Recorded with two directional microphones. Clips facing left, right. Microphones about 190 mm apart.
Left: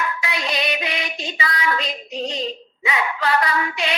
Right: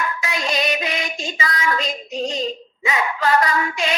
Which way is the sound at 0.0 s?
45° right (ahead or behind).